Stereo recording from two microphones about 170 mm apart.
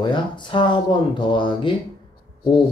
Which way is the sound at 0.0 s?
25° left (ahead or behind).